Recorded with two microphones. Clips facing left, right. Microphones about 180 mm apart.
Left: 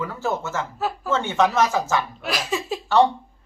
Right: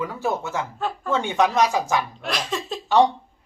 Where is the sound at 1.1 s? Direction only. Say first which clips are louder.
Even; 15° right (ahead or behind).